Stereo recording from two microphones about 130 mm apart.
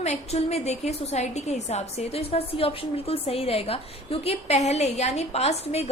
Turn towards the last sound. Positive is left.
turn(degrees=55)  # may be behind; listen again after turning